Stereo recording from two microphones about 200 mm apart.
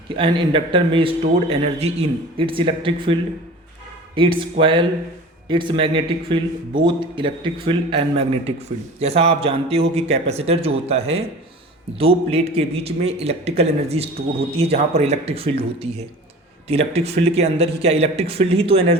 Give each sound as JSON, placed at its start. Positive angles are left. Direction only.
{"t": 0.2, "sound": "a man's voice", "side_deg": -25}
{"t": 9.0, "sound": "speech", "side_deg": -30}